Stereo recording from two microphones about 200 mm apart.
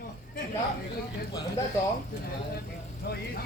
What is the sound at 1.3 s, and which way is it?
Bird, 15° left (ahead or behind).